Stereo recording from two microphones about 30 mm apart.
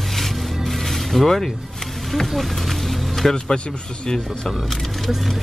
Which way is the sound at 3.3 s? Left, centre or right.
Left.